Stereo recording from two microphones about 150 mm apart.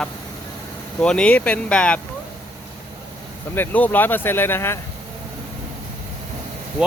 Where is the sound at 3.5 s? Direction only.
10° left (ahead or behind).